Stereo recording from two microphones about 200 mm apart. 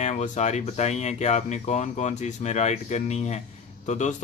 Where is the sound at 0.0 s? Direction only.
35° left (ahead or behind).